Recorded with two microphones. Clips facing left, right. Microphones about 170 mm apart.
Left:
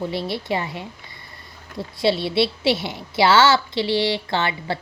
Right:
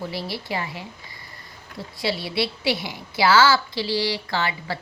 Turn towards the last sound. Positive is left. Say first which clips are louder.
# left 3 dB
turn(degrees=25)  # may be behind; listen again after turning